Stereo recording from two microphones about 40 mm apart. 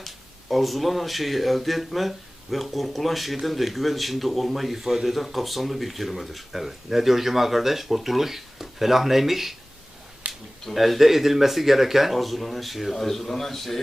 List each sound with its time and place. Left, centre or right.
0.5 s speech: centre
10.3 s a sound: right
10.8 s speech: centre